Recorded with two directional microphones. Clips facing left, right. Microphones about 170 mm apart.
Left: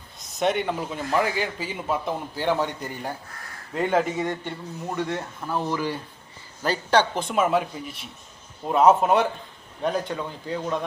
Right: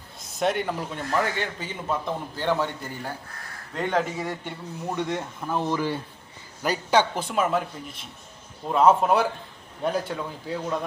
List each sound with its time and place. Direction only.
0.3 s a man's voice: centre (ahead or behind); by 3.1 s 15° left (ahead or behind)
3.8 s a man's voice: 5° left (ahead or behind)
4.9 s speech: 20° right (ahead or behind)
6.6 s a man's voice: 10° right (ahead or behind)